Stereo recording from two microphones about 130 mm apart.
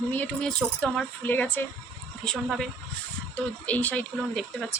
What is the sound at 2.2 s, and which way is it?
Speech, 5° left (ahead or behind).